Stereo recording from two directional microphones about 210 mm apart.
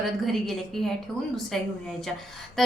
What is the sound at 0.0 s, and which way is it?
A woman's voice, centre (ahead or behind).